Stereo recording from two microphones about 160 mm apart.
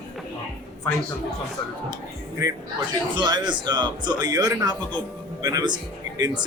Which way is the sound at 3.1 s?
30° right (ahead or behind).